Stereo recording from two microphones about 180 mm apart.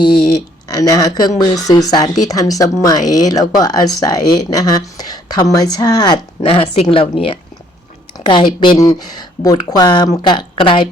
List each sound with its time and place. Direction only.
0.1 s speech: 60° left (ahead or behind)
0.7 s speech: 20° left (ahead or behind)